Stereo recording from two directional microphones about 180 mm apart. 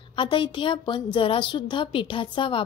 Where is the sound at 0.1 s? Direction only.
30° left (ahead or behind).